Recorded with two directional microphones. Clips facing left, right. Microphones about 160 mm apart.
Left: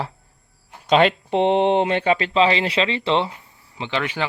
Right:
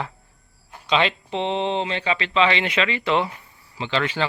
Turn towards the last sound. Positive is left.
turn(degrees=15)  # may be behind; listen again after turning